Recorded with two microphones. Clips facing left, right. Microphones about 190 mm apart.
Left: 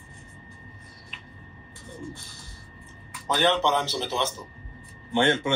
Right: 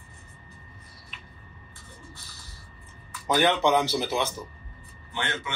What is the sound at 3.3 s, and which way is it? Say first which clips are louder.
Speech: right 1 dB; 10° right (ahead or behind).